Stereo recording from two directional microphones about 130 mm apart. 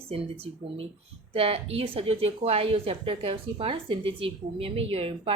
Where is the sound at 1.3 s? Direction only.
50° right (ahead or behind).